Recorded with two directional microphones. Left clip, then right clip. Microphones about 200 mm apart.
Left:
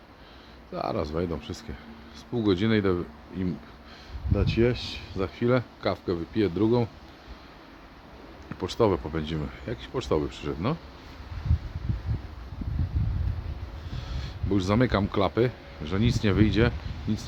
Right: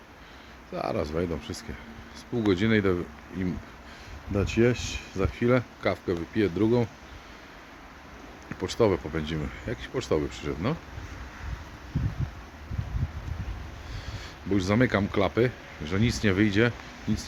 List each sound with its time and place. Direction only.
0.7 s speech: 5° right (ahead or behind)
4.4 s speech: 15° right (ahead or behind)
8.4 s speech: centre (ahead or behind)
14.7 s speech: centre (ahead or behind)